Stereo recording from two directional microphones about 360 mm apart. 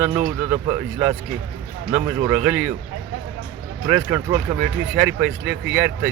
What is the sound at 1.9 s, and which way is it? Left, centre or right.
Speech, centre.